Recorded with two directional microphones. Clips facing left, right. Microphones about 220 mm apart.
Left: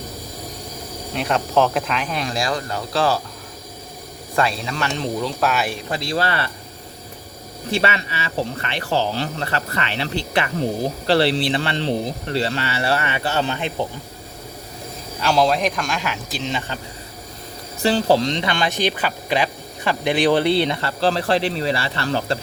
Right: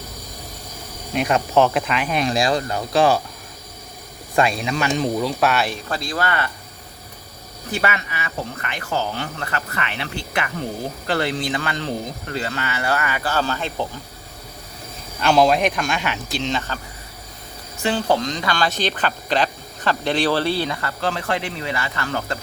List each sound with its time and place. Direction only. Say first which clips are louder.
1.1 s speech: right 2 dB; 10° right (ahead or behind)
2.1 s speech: right 7 dB; 20° right (ahead or behind)
4.4 s speech: right 2 dB; 15° right (ahead or behind); by 5.7 s centre (ahead or behind)
5.9 s speech: left 1 dB; 25° left (ahead or behind)
7.7 s speech: left 2 dB; 30° left (ahead or behind)
15.2 s speech: right 2 dB; 5° right (ahead or behind); by 16.8 s 15° left (ahead or behind)
17.8 s speech: left 3 dB; 35° left (ahead or behind)